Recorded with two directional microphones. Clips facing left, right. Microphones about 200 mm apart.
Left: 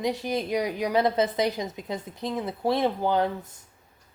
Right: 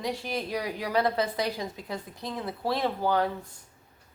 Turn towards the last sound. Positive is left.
turn(degrees=20)  # may be behind; listen again after turning